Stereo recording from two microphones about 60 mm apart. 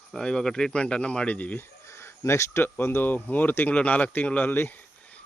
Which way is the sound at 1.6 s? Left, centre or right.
Left.